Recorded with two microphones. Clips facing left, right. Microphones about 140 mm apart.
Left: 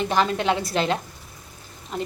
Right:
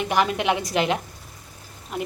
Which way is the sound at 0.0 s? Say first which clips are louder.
Even; 15° right (ahead or behind).